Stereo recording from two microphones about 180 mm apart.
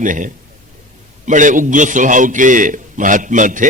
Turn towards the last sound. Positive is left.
turn(degrees=-45)  # may be behind; listen again after turning